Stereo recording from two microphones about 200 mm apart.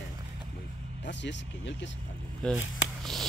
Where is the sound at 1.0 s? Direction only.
60° left (ahead or behind).